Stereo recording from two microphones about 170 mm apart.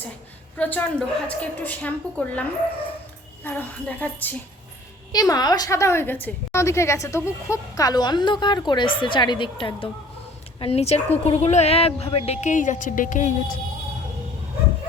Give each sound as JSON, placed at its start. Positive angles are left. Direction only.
{"t": 0.5, "sound": "a woman's voice", "side_deg": 10}
{"t": 5.1, "sound": "a woman's voice", "side_deg": 20}